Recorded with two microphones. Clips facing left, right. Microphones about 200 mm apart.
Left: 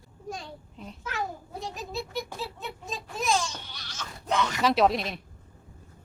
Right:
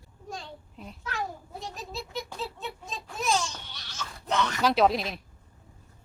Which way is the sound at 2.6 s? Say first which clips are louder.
Left 1 dB; centre (ahead or behind).